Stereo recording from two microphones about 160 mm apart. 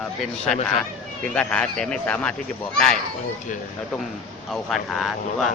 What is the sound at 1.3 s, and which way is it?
A man's voice, 5° left (ahead or behind).